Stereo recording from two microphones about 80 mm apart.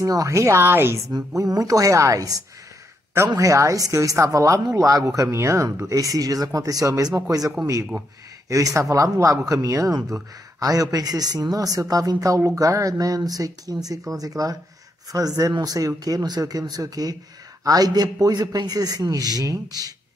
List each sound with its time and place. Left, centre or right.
0.0 s speech: right
1.0 s speech: right